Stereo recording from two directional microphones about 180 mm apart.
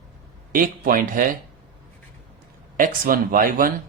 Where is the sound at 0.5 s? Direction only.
50° right (ahead or behind).